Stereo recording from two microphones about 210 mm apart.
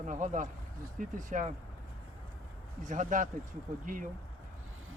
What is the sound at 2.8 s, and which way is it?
Speech, 40° right (ahead or behind).